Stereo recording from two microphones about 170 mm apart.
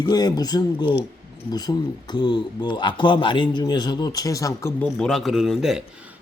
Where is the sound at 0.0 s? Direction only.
25° left (ahead or behind).